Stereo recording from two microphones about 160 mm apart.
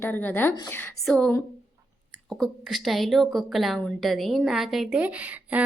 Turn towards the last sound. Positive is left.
turn(degrees=-10)  # may be behind; listen again after turning